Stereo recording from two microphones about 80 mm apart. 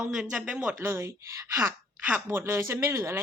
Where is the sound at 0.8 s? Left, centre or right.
Right.